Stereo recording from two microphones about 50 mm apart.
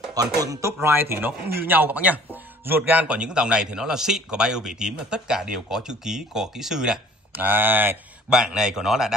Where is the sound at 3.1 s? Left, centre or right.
Centre.